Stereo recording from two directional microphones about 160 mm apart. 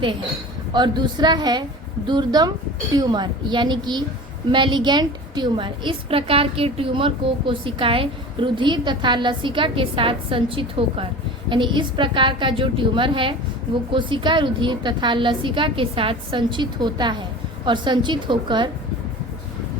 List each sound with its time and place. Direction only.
0.7 s a woman's voice: 25° right (ahead or behind)